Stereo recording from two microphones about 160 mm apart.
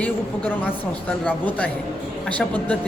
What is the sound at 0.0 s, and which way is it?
A woman's voice, 10° left (ahead or behind).